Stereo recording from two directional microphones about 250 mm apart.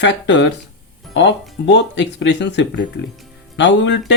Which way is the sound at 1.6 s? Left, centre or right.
Left.